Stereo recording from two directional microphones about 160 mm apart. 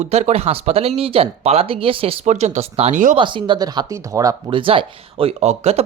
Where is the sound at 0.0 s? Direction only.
45° right (ahead or behind).